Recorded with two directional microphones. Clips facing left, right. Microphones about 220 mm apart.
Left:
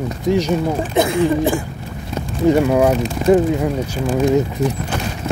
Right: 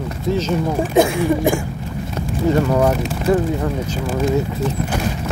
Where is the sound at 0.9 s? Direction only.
15° right (ahead or behind).